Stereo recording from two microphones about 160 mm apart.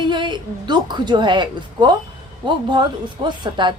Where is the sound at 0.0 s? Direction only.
30° right (ahead or behind).